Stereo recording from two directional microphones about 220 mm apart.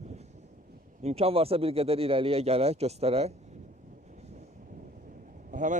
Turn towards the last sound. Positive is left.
turn(degrees=-35)  # may be behind; listen again after turning